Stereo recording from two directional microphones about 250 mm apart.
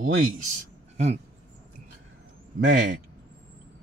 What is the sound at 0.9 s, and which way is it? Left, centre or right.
Speech, right.